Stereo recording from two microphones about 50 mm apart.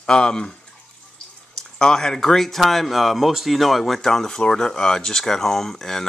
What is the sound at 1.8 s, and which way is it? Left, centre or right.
Speech, centre.